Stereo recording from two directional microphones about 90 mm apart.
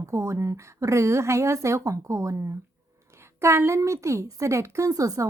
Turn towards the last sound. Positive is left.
turn(degrees=-40)  # may be behind; listen again after turning